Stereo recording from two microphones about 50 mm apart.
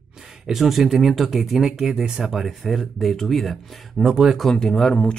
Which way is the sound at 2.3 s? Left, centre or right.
Centre.